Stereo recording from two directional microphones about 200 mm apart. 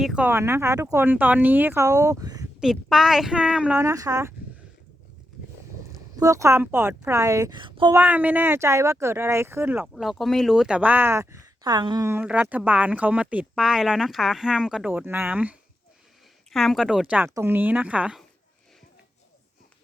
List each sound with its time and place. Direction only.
0.0 s speech: 5° right (ahead or behind)
2.6 s speech: centre (ahead or behind)
6.1 s speech: 15° right (ahead or behind)
7.9 s speech: 10° right (ahead or behind)